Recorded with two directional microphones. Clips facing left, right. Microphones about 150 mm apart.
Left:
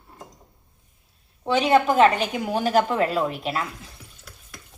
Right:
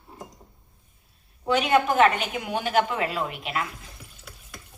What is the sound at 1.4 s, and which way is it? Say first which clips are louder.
A woman's voice: left 2 dB; 30° left (ahead or behind).